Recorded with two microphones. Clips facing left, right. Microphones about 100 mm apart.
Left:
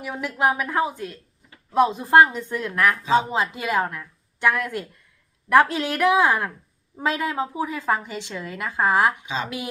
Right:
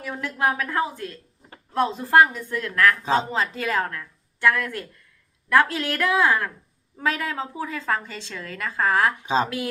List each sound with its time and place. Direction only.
0.0 s a woman's voice: 15° left (ahead or behind)
9.2 s speech: 35° right (ahead or behind)